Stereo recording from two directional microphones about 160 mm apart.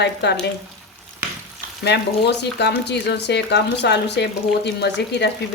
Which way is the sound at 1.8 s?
90° left.